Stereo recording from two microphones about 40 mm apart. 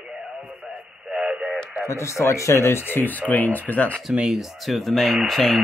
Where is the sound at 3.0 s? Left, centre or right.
Left.